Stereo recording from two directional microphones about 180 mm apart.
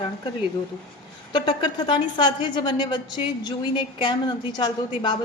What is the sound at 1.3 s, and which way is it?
A woman's voice, 25° left (ahead or behind).